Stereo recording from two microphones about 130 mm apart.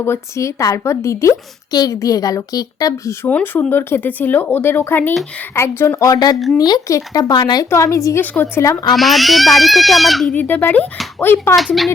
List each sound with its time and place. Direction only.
0.0 s a woman's voice: 20° left (ahead or behind)
3.2 s a woman's voice: 15° left (ahead or behind)
6.3 s speech: centre (ahead or behind)
6.6 s a woman's voice: 30° left (ahead or behind)
8.2 s speech: 15° left (ahead or behind)
9.0 s speech: centre (ahead or behind)
10.3 s speech: 15° left (ahead or behind)
11.5 s speech: centre (ahead or behind)